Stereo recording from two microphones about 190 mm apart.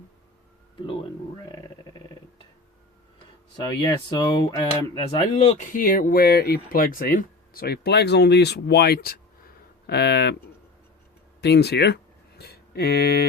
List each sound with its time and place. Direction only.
0.8 s speech: 25° left (ahead or behind)
1.5 s a sound: 20° left (ahead or behind)
3.8 s speech: 20° left (ahead or behind)
5.7 s speech: 45° left (ahead or behind)
11.3 s speech: 60° left (ahead or behind)